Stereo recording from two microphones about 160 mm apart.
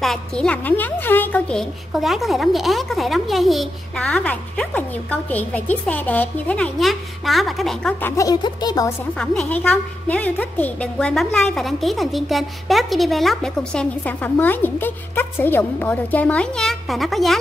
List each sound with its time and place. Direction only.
0.0 s a woman's voice: 5° left (ahead or behind)
8.0 s speech: 20° left (ahead or behind)
9.2 s a woman's voice: 5° left (ahead or behind)